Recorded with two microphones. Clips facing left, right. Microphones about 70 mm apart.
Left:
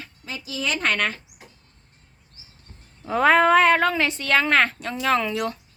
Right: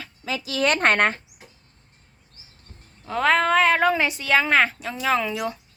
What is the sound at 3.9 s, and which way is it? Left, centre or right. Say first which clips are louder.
A woman's voice: right 1 dB; centre.